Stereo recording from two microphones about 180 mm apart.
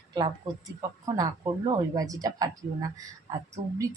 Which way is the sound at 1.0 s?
20° right (ahead or behind).